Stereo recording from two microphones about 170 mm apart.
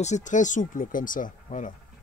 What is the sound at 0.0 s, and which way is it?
Speech, 45° left (ahead or behind).